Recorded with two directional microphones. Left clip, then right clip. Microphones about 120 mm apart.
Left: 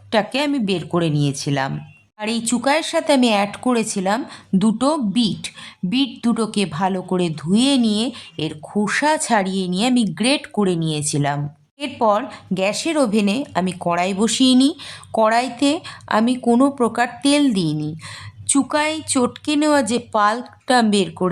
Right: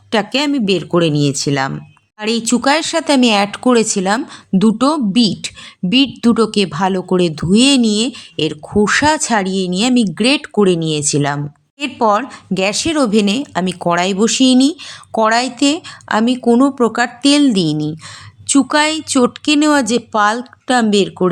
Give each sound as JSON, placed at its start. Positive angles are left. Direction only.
{"t": 0.1, "sound": "a woman's voice", "side_deg": -20}
{"t": 14.2, "sound": "a woman's voice", "side_deg": -15}
{"t": 19.0, "sound": "a woman's voice", "side_deg": -15}